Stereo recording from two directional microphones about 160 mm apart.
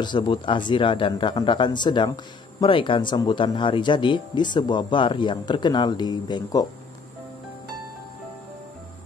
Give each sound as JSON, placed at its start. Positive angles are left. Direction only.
{"t": 0.0, "sound": "speech", "side_deg": 30}